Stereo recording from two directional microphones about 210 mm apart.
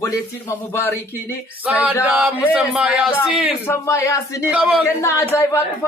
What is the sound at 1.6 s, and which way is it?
Male singing, 5° right (ahead or behind).